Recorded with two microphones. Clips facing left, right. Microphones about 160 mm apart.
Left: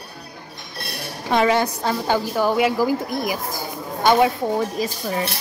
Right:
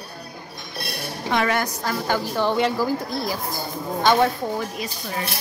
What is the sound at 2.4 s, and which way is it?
Speech, 10° left (ahead or behind).